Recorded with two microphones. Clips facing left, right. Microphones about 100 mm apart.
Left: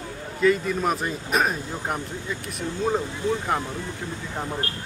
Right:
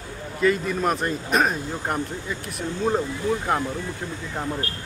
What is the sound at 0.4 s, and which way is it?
Speech, centre (ahead or behind).